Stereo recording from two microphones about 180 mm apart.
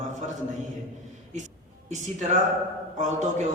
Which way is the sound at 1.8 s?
40° right (ahead or behind).